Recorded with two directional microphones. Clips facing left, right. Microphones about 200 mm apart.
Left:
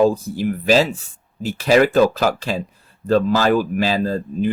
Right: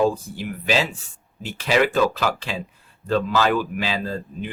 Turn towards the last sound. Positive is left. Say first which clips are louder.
# left 9 dB
turn(degrees=40)  # may be behind; listen again after turning